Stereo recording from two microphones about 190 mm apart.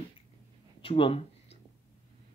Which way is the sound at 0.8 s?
30° left (ahead or behind).